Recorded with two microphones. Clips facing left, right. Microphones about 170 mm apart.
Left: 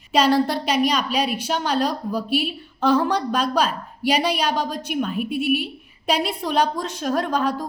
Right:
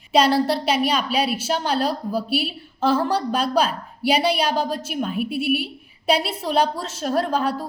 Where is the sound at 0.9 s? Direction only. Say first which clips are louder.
Even; 5° right (ahead or behind).